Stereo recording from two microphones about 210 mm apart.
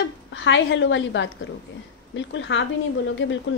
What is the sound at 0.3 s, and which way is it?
A woman's voice, 60° left (ahead or behind).